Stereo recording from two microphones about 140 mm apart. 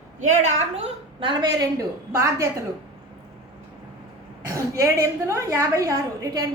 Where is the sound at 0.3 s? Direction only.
50° right (ahead or behind); by 2.6 s 20° right (ahead or behind).